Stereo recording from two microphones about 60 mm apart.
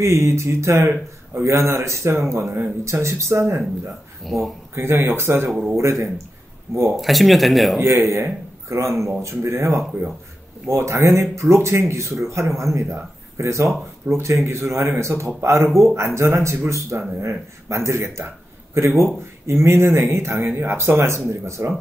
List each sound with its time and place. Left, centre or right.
0.0 s speech: right
4.2 s speech: centre
4.7 s speech: right
7.0 s speech: centre
7.8 s a man's voice: right